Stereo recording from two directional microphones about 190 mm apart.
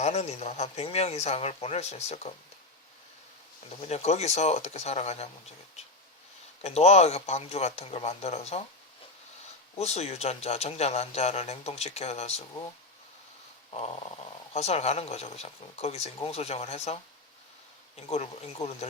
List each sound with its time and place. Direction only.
0.0 s speech: 35° left (ahead or behind)
3.8 s speech: 35° left (ahead or behind)
6.6 s speech: 35° left (ahead or behind)
9.7 s speech: 35° left (ahead or behind)
14.5 s speech: 35° left (ahead or behind)